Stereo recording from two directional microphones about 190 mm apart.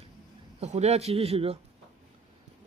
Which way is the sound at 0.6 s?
35° right (ahead or behind).